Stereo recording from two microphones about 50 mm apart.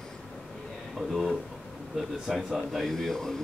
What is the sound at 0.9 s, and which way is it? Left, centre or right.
Speech, centre.